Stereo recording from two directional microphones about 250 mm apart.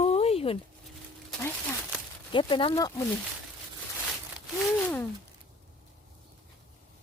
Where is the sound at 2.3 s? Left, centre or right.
Centre.